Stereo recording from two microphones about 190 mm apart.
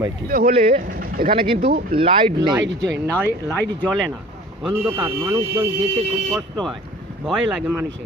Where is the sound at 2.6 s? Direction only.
65° right (ahead or behind).